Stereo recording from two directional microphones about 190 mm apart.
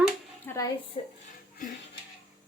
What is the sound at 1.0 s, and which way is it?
Speech, 30° left (ahead or behind).